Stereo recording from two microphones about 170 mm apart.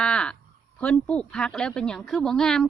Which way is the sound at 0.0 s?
5° left (ahead or behind).